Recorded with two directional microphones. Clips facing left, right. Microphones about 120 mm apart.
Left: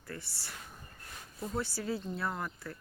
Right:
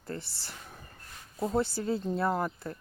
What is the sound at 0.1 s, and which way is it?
Speech, 25° right (ahead or behind).